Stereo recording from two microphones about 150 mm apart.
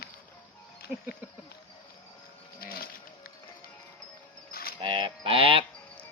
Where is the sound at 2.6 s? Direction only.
85° left.